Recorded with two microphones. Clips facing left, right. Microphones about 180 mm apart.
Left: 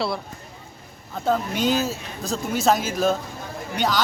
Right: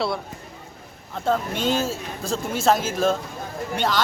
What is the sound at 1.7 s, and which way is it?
Speech, 30° right (ahead or behind).